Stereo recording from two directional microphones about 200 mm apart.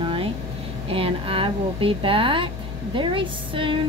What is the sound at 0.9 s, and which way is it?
A woman's voice, 25° right (ahead or behind).